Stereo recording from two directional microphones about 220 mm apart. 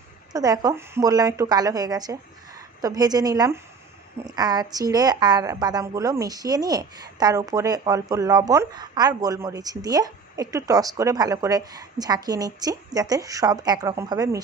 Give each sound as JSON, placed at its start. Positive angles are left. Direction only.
{"t": 0.3, "sound": "a woman's voice", "side_deg": -15}